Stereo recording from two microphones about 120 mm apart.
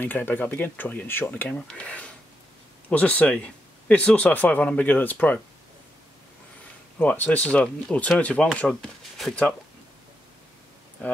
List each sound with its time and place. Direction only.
0.0 s speech: 15° left (ahead or behind)
7.0 s speech: 10° left (ahead or behind)